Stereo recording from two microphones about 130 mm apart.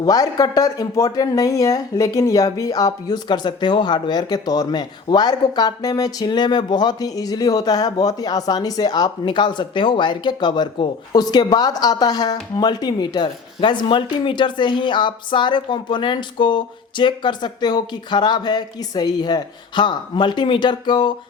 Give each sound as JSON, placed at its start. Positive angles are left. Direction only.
{"t": 0.0, "sound": "speech", "side_deg": 30}